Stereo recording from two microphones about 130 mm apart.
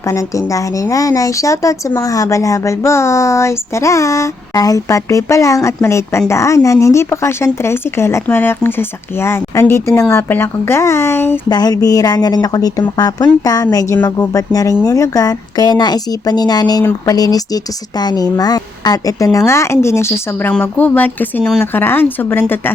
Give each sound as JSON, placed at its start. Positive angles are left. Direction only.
{"t": 0.0, "sound": "speech", "side_deg": 25}
{"t": 11.4, "sound": "a woman's voice", "side_deg": 30}